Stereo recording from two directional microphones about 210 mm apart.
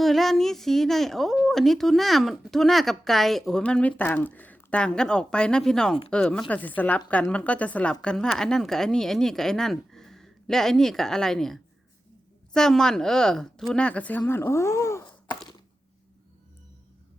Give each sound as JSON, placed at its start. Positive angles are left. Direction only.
{"t": 0.0, "sound": "a woman's voice", "side_deg": 0}